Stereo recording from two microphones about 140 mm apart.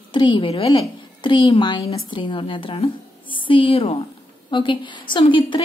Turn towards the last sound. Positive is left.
turn(degrees=35)  # may be behind; listen again after turning